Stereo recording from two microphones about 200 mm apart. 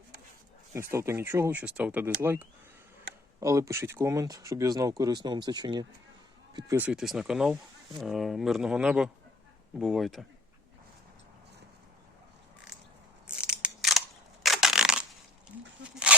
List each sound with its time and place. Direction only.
0.7 s speech: 15° right (ahead or behind)
6.7 s speech: 5° right (ahead or behind)
13.2 s scissors: 5° right (ahead or behind)
14.4 s crushing: centre (ahead or behind)
15.8 s a sound: 5° right (ahead or behind)